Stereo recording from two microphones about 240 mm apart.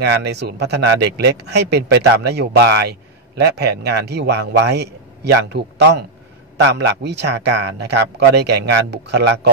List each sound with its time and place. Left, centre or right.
0.0 s speech: right